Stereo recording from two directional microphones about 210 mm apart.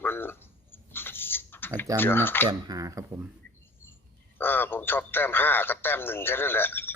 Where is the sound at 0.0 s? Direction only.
10° left (ahead or behind).